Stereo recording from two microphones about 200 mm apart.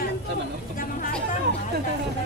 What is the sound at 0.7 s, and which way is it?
Chatter, 40° left (ahead or behind).